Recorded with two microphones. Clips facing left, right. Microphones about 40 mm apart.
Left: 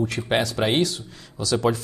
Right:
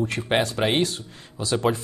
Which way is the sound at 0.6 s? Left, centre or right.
Centre.